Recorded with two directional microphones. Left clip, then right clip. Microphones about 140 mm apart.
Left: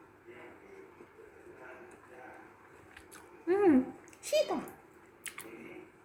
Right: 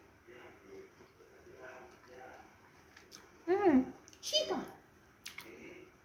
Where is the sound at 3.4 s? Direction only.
5° left (ahead or behind).